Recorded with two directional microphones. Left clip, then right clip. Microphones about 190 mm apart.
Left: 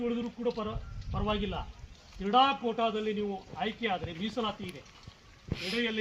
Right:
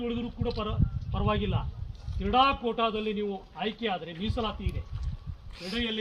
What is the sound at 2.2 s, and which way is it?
A man's voice, 35° right (ahead or behind).